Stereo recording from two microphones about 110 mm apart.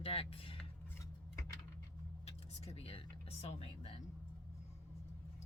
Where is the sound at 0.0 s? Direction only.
60° left (ahead or behind).